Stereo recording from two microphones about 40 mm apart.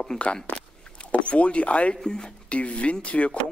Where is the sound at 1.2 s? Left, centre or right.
Left.